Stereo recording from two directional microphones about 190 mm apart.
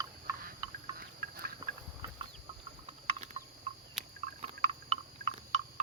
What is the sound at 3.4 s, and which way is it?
Cricket, 35° right (ahead or behind).